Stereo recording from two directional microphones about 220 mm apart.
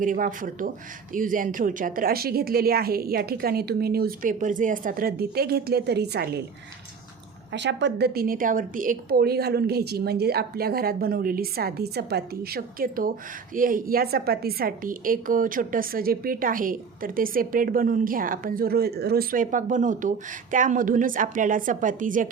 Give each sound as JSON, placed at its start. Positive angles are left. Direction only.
{"t": 0.0, "sound": "a woman's voice", "side_deg": -35}
{"t": 7.5, "sound": "a woman's voice", "side_deg": -55}